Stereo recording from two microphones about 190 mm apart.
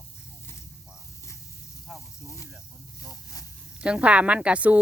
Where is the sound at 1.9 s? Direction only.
Centre (ahead or behind).